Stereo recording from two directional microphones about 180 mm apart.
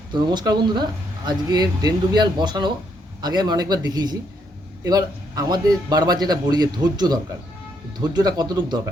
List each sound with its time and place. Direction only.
0.1 s speech: 25° right (ahead or behind)